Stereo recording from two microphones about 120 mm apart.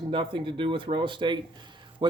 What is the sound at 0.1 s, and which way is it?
Speech, 45° right (ahead or behind).